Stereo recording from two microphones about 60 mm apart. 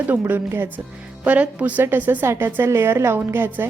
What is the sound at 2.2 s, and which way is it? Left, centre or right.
A woman's voice, right.